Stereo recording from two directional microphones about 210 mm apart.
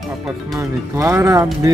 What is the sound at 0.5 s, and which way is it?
Speech, 15° right (ahead or behind).